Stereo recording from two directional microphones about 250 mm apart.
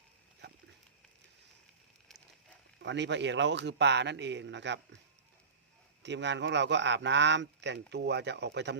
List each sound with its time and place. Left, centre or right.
2.8 s a man's voice: right
6.0 s a man's voice: right